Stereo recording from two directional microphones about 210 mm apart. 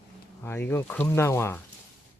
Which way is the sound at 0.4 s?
10° left (ahead or behind).